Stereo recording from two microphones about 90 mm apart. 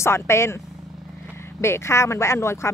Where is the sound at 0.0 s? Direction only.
30° left (ahead or behind).